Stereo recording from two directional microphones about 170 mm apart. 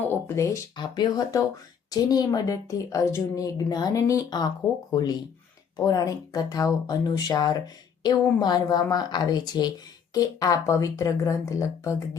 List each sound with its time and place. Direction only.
0.1 s a woman's voice: 15° left (ahead or behind)